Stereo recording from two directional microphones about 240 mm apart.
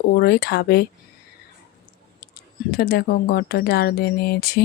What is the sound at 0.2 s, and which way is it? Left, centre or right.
Speech, left.